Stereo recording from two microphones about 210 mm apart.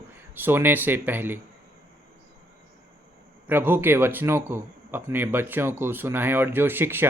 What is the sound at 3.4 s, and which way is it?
Speech, 10° right (ahead or behind).